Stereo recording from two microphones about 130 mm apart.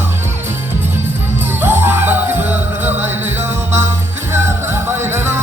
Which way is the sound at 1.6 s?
15° right (ahead or behind).